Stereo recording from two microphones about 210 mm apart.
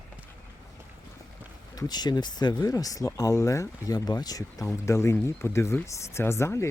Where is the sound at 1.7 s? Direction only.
20° left (ahead or behind).